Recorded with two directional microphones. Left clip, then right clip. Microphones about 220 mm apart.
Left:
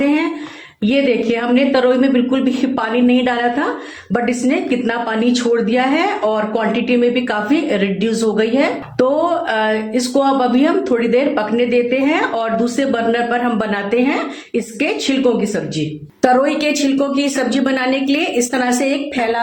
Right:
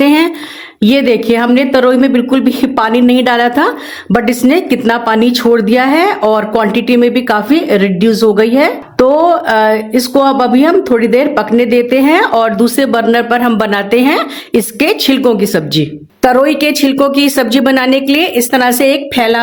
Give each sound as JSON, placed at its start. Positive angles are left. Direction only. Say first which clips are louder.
{"t": 0.0, "sound": "a sound", "louder": "right 8 dB", "side_deg": -50}
{"t": 0.8, "sound": "speech", "louder": "right 5 dB", "side_deg": -55}
{"t": 16.2, "sound": "a woman's voice", "louder": "right 5 dB", "side_deg": -35}